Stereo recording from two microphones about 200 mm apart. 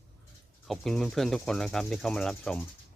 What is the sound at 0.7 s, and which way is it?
Speech, centre (ahead or behind).